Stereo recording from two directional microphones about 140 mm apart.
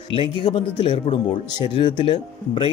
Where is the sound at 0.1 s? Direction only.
40° left (ahead or behind).